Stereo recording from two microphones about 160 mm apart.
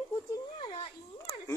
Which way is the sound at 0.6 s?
35° left (ahead or behind).